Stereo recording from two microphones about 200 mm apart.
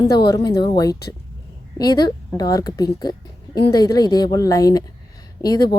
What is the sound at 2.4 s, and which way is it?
A woman's voice, 20° left (ahead or behind).